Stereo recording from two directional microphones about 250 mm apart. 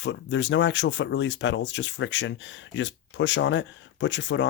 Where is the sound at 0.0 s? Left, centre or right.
Left.